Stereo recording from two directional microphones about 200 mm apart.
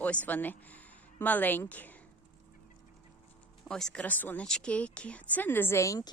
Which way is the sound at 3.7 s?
5° left (ahead or behind).